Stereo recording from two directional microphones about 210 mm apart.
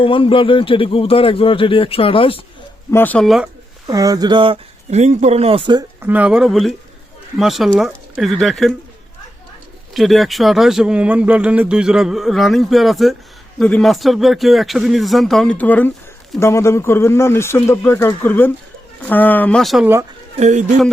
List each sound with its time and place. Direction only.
0.0 s a man's voice: 25° left (ahead or behind)
2.9 s speech: 10° left (ahead or behind)
3.8 s speech: 15° right (ahead or behind)
6.0 s speech: 10° right (ahead or behind)
9.9 s speech: centre (ahead or behind)
20.4 s speech: 35° right (ahead or behind)